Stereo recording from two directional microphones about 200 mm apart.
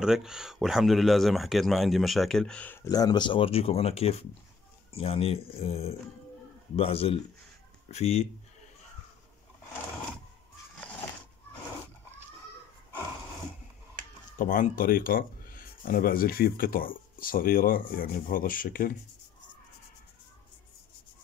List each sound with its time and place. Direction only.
0.0 s speech: 5° right (ahead or behind); by 8.3 s 35° left (ahead or behind)
14.4 s speech: 45° left (ahead or behind)